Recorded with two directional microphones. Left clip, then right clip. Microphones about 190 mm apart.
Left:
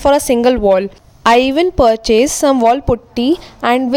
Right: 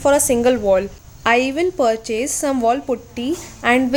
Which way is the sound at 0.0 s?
45° left (ahead or behind).